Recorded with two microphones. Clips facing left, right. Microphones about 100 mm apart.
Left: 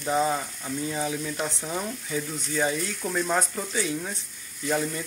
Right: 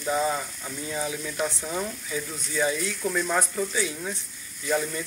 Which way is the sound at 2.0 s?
30° left (ahead or behind).